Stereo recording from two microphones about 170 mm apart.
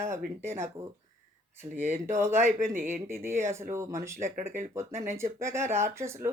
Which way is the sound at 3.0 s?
15° right (ahead or behind).